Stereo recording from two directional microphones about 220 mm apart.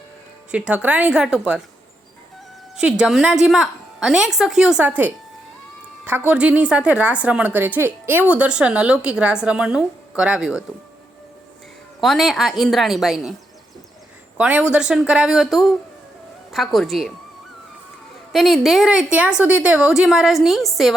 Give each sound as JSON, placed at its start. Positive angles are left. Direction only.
{"t": 0.5, "sound": "a woman's voice", "side_deg": -5}
{"t": 3.0, "sound": "a woman's voice", "side_deg": -5}
{"t": 11.9, "sound": "a woman's voice", "side_deg": 0}
{"t": 14.3, "sound": "a woman's voice", "side_deg": -5}
{"t": 18.3, "sound": "a woman's voice", "side_deg": 0}